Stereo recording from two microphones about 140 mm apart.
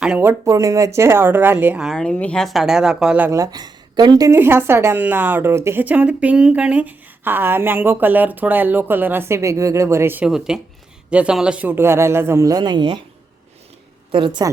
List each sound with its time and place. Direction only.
0.2 s a woman's voice: 20° right (ahead or behind)
1.9 s speech: 5° left (ahead or behind)
3.3 s speech: 25° right (ahead or behind)
4.3 s a woman's voice: 15° right (ahead or behind)
10.2 s a woman's voice: 5° right (ahead or behind); by 13.0 s 35° right (ahead or behind)
14.1 s a woman's voice: 35° right (ahead or behind)